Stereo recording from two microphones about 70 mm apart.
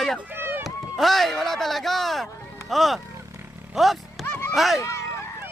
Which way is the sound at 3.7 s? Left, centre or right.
Centre.